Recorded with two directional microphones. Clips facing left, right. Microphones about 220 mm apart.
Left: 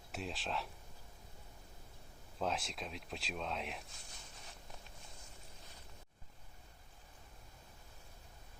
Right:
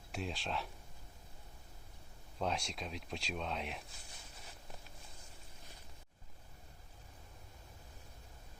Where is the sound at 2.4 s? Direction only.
Centre (ahead or behind).